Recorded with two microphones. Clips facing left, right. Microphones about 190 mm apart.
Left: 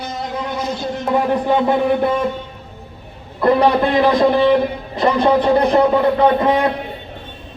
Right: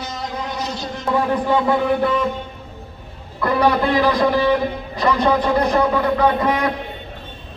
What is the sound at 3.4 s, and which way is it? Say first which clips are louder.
Speech: left 4 dB; 25° left (ahead or behind).